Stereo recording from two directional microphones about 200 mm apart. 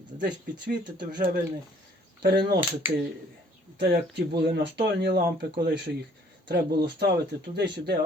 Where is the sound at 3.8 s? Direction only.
60° right (ahead or behind).